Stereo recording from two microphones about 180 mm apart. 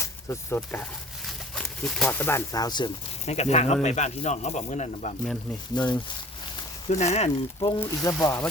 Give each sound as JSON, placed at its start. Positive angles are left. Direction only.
{"t": 0.0, "sound": "speech", "side_deg": 15}
{"t": 3.2, "sound": "speech", "side_deg": 35}
{"t": 5.2, "sound": "speech", "side_deg": 5}
{"t": 6.8, "sound": "speech", "side_deg": 35}
{"t": 7.8, "sound": "speech", "side_deg": 15}